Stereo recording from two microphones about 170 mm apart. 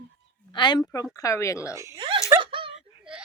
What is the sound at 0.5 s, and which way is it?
A woman's voice, 25° left (ahead or behind).